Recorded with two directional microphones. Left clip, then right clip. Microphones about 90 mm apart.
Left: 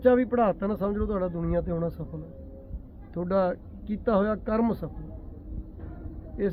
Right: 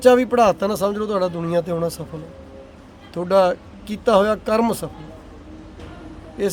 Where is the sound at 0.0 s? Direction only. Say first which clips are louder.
Right 8 dB; 15° right (ahead or behind).